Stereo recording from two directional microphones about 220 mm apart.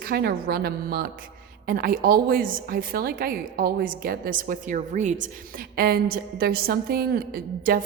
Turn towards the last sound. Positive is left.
turn(degrees=-40)  # may be behind; listen again after turning